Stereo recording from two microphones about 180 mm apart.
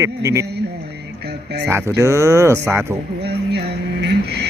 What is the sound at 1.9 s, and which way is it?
Speech, 15° right (ahead or behind).